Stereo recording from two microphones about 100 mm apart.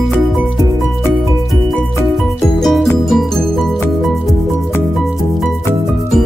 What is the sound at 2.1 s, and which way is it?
Music, centre (ahead or behind).